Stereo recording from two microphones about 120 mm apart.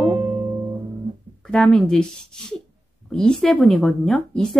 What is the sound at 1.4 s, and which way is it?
Female singing, 5° left (ahead or behind).